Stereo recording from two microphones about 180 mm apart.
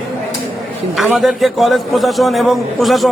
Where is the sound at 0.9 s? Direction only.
Centre (ahead or behind).